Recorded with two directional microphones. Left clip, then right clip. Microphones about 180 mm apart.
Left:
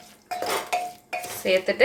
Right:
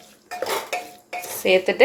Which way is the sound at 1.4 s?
30° right (ahead or behind).